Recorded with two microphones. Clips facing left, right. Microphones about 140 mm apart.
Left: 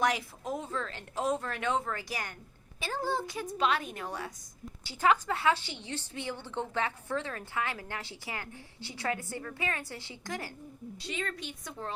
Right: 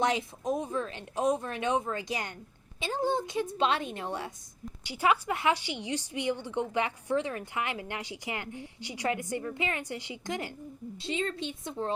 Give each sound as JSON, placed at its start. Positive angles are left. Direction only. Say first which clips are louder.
{"t": 0.0, "sound": "speech", "louder": "right 2 dB", "side_deg": -25}
{"t": 4.8, "sound": "a woman's voice", "louder": "even", "side_deg": -15}